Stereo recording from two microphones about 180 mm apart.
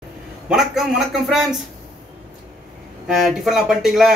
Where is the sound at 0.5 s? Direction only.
Centre (ahead or behind).